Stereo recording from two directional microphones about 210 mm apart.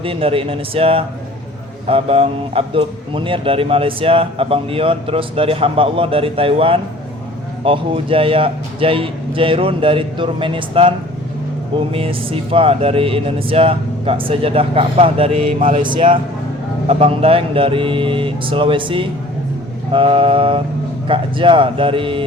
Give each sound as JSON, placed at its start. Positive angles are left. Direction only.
{"t": 0.0, "sound": "speech", "side_deg": -25}